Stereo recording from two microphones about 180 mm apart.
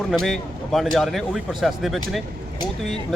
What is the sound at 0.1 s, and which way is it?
Speech, centre (ahead or behind).